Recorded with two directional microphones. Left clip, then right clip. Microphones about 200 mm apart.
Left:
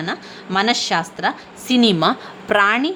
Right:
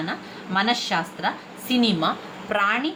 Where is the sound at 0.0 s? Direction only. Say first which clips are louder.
Left 4 dB; 50° left (ahead or behind).